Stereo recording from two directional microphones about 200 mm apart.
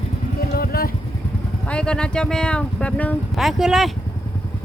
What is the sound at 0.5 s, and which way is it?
Vehicle, 50° left (ahead or behind).